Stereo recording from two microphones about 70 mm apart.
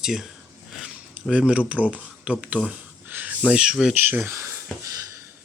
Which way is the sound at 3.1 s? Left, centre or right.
Right.